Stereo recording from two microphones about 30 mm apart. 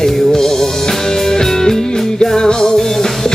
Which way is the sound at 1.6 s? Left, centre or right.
Left.